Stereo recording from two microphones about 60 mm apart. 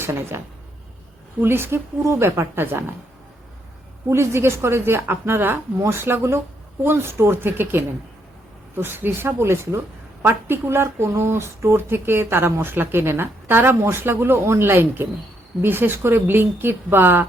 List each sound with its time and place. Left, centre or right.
0.0 s speech: right
4.1 s a woman's voice: right